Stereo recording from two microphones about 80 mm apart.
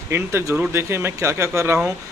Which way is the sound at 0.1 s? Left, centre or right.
Right.